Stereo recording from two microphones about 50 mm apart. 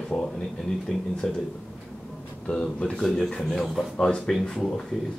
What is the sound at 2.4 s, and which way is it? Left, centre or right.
Speech, centre.